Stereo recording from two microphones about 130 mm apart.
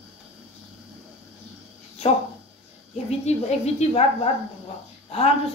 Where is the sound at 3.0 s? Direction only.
55° left (ahead or behind).